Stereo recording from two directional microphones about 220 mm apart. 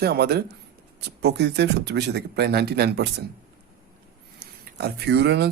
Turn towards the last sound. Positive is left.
turn(degrees=-50)  # may be behind; listen again after turning